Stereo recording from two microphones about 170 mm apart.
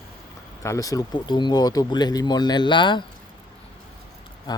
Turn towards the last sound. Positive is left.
turn(degrees=25)  # may be behind; listen again after turning